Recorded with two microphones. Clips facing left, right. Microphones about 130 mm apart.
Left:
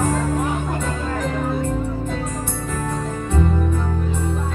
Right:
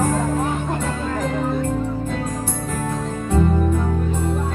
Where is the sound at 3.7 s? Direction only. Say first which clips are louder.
Right 2 dB; 5° right (ahead or behind).